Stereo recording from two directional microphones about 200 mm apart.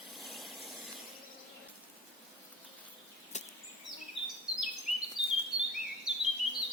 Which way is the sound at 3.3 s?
35° left (ahead or behind).